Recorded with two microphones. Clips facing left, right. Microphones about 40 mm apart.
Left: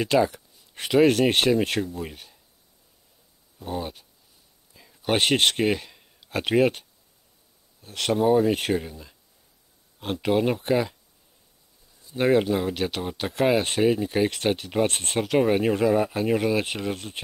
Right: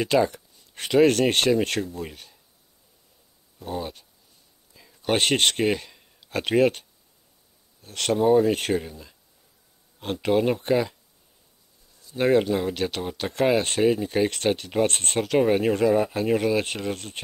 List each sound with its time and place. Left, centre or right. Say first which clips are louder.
0.0 s speech: even; centre
3.5 s speech: even; centre
12.2 s speech: even; centre